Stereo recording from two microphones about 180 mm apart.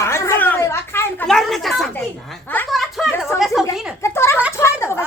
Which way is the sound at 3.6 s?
15° left (ahead or behind).